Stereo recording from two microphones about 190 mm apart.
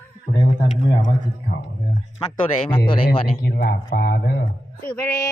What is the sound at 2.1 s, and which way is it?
Speech, 25° left (ahead or behind).